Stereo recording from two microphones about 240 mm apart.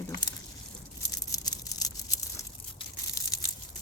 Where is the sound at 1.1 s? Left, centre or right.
Centre.